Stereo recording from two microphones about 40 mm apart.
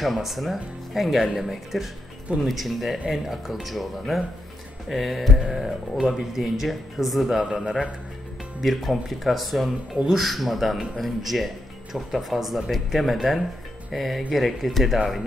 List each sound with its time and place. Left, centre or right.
0.0 s speech: centre
7.4 s speech: right
8.5 s speech: centre